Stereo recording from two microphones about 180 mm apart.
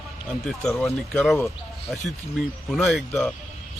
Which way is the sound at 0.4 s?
5° left (ahead or behind).